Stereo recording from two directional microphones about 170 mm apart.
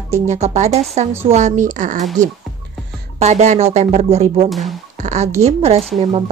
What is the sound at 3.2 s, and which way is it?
A woman's voice, 40° right (ahead or behind).